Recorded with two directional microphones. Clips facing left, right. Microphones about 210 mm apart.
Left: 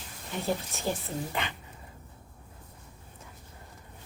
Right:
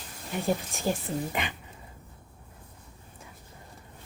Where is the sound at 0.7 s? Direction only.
15° right (ahead or behind).